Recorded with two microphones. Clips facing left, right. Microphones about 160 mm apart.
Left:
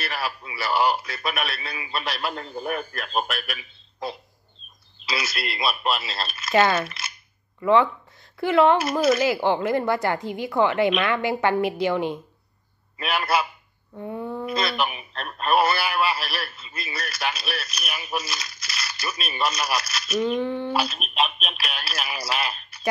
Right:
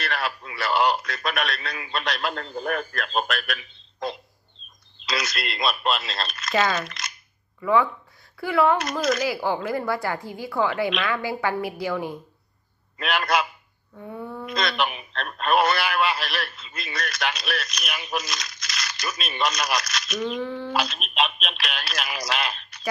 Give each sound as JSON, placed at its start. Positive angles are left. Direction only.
{"t": 0.0, "sound": "speech", "side_deg": 5}
{"t": 7.6, "sound": "speech", "side_deg": 25}
{"t": 12.9, "sound": "speech", "side_deg": 5}
{"t": 13.9, "sound": "a sound", "side_deg": 15}
{"t": 14.4, "sound": "speech", "side_deg": 5}
{"t": 20.4, "sound": "speech", "side_deg": 20}
{"t": 20.7, "sound": "speech", "side_deg": 5}